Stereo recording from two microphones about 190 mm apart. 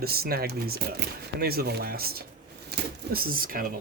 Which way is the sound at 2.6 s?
55° right (ahead or behind).